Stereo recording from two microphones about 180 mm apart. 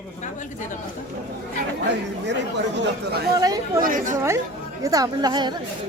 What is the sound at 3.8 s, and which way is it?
Speech, 50° right (ahead or behind).